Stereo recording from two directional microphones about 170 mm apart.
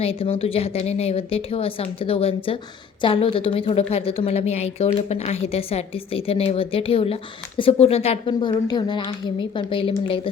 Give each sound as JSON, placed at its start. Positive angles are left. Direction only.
{"t": 0.0, "sound": "a woman's voice", "side_deg": 35}
{"t": 8.3, "sound": "speech", "side_deg": 25}